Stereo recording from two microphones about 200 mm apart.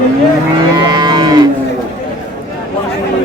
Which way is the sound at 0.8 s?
20° right (ahead or behind).